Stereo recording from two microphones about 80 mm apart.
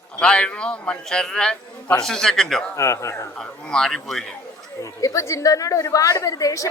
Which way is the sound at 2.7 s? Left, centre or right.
Left.